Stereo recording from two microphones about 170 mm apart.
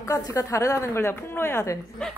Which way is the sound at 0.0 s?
20° left (ahead or behind).